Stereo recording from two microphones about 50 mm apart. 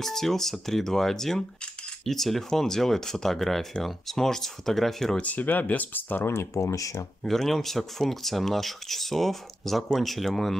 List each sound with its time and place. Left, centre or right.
0.0 s speech: centre
5.1 s speech: left
6.2 s speech: left
7.2 s speech: centre